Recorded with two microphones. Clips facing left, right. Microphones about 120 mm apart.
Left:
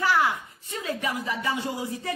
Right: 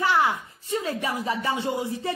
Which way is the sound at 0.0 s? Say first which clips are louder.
Right 1 dB; 25° right (ahead or behind).